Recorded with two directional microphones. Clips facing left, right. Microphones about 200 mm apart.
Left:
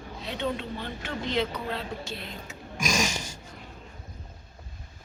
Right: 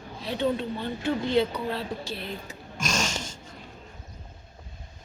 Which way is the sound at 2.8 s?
10° left (ahead or behind).